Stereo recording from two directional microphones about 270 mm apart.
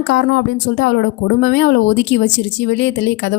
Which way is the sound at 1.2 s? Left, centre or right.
Left.